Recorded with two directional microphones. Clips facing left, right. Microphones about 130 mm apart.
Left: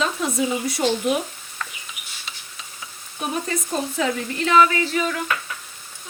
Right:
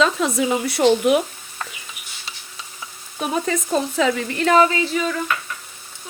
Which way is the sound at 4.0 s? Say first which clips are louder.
Right 3 dB; 60° right (ahead or behind).